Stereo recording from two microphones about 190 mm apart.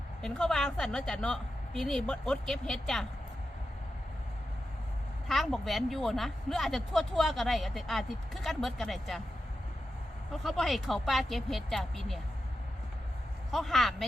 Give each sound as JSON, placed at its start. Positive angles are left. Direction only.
{"t": 0.2, "sound": "speech", "side_deg": 5}
{"t": 5.3, "sound": "speech", "side_deg": 0}
{"t": 10.3, "sound": "speech", "side_deg": 0}
{"t": 13.5, "sound": "speech", "side_deg": 0}